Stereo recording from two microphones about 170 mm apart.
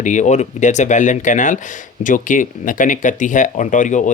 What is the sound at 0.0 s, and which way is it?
Speech, 45° left (ahead or behind).